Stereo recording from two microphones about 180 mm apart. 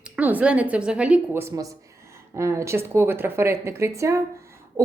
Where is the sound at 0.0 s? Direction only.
10° right (ahead or behind).